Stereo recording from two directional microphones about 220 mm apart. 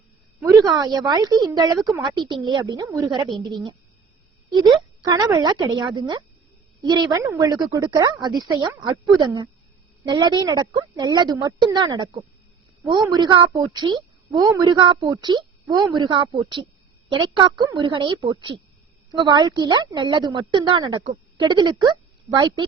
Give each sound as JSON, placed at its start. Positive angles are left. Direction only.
{"t": 0.4, "sound": "a woman's voice", "side_deg": -15}
{"t": 5.0, "sound": "a woman's voice", "side_deg": -15}